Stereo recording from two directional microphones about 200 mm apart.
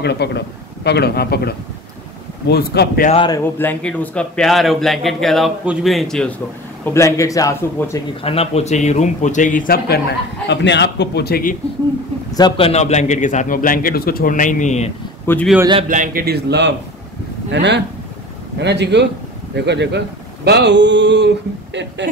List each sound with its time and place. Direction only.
0.0 s a man's voice: 55° left (ahead or behind)
3.1 s a man's voice: 20° left (ahead or behind); by 6.3 s 5° left (ahead or behind)
6.8 s a man's voice: 15° left (ahead or behind)
8.2 s a man's voice: 30° left (ahead or behind); by 11.5 s 50° left (ahead or behind)
12.4 s a man's voice: 25° left (ahead or behind)
15.2 s a man's voice: 10° left (ahead or behind)
15.9 s speech: 45° right (ahead or behind)
17.5 s mantra: 60° right (ahead or behind)